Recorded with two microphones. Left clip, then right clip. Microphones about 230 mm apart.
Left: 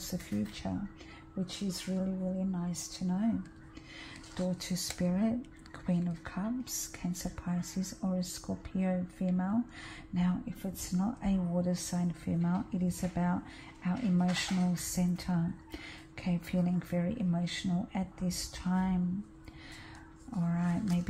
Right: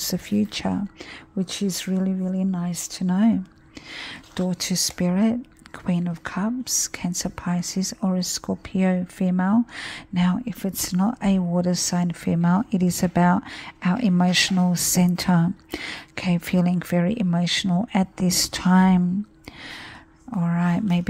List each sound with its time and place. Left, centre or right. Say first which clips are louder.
0.1 s speech: right 13 dB; right
20.2 s speech: right 11 dB; right